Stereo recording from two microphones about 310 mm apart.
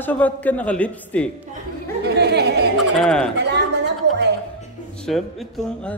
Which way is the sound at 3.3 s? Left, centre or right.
Right.